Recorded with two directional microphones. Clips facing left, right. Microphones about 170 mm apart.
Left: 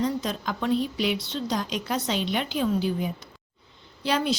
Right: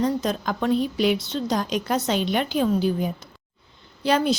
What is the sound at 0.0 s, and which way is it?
Speech, 45° right (ahead or behind).